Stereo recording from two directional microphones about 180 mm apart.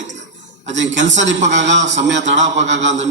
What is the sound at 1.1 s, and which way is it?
A man's voice, 85° right.